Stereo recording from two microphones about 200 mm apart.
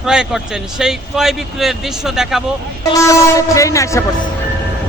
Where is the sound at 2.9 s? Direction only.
15° left (ahead or behind).